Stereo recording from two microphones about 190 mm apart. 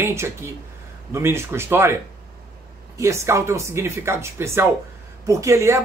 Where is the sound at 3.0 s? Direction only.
15° right (ahead or behind).